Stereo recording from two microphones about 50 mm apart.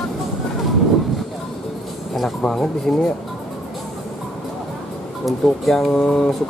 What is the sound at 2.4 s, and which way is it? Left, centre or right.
Speech, centre.